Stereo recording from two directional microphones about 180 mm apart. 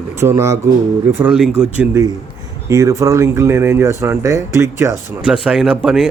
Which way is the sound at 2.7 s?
15° right (ahead or behind).